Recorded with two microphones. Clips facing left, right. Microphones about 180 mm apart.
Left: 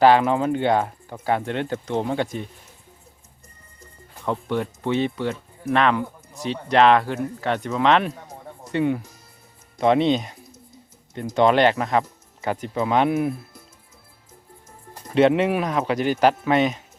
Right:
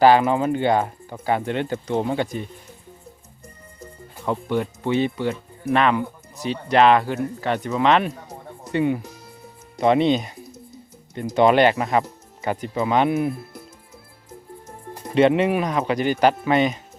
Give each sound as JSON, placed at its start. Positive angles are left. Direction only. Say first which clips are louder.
{"t": 0.0, "sound": "speech", "louder": "right 1 dB", "side_deg": 0}
{"t": 4.3, "sound": "speech", "louder": "right 1 dB", "side_deg": -5}
{"t": 11.3, "sound": "speech", "louder": "right 1 dB", "side_deg": -5}
{"t": 15.1, "sound": "speech", "louder": "right 1 dB", "side_deg": 0}